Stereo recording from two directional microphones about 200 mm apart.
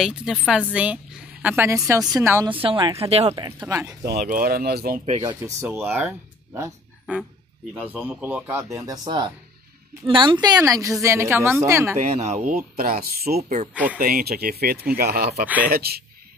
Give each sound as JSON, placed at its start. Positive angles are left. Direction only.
{"t": 0.0, "sound": "a woman's voice", "side_deg": -5}
{"t": 2.5, "sound": "speech", "side_deg": -25}
{"t": 3.3, "sound": "a woman's voice", "side_deg": -20}
{"t": 4.0, "sound": "speech", "side_deg": -50}
{"t": 5.4, "sound": "a woman's voice", "side_deg": -10}
{"t": 6.5, "sound": "a sound", "side_deg": -10}
{"t": 7.7, "sound": "a woman's voice", "side_deg": -10}
{"t": 12.0, "sound": "speech", "side_deg": -35}
{"t": 13.4, "sound": "speech", "side_deg": -35}
{"t": 13.9, "sound": "speech", "side_deg": -45}
{"t": 15.4, "sound": "a woman's voice", "side_deg": -10}
{"t": 15.7, "sound": "speech", "side_deg": -50}